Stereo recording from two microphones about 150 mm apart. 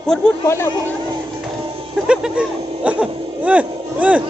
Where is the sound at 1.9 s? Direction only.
5° right (ahead or behind).